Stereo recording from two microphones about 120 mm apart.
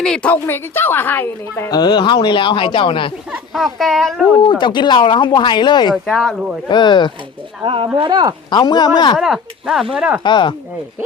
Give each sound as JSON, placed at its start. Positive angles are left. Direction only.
{"t": 0.0, "sound": "a woman's voice", "side_deg": 5}
{"t": 0.4, "sound": "a woman's voice", "side_deg": 20}
{"t": 1.7, "sound": "speech", "side_deg": 35}
{"t": 3.5, "sound": "speech", "side_deg": 0}
{"t": 4.4, "sound": "speech", "side_deg": 40}
{"t": 5.9, "sound": "speech", "side_deg": 0}
{"t": 6.7, "sound": "speech", "side_deg": 40}
{"t": 7.6, "sound": "speech", "side_deg": -50}
{"t": 8.4, "sound": "speech", "side_deg": 35}
{"t": 9.1, "sound": "speech", "side_deg": 0}
{"t": 10.2, "sound": "speech", "side_deg": 40}